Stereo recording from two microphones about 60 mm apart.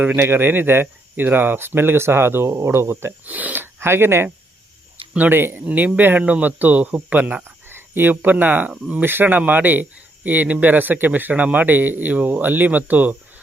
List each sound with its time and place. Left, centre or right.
0.2 s speech: right
3.2 s speech: right
5.1 s a man's voice: right
7.4 s a man's voice: right